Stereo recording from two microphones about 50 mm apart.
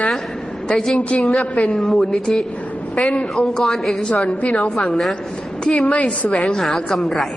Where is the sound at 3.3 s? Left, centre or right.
Centre.